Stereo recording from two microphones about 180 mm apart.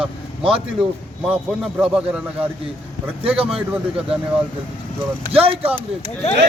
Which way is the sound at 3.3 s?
30° right (ahead or behind).